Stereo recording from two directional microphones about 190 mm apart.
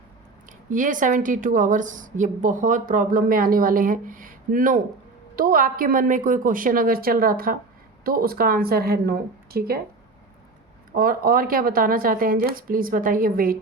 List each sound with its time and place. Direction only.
0.7 s a woman's voice: 45° right (ahead or behind)
10.9 s a woman's voice: 50° right (ahead or behind)